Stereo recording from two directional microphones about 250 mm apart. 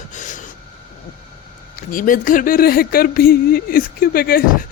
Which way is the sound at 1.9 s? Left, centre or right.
Left.